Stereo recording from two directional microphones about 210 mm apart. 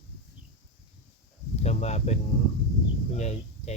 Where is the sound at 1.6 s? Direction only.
30° left (ahead or behind).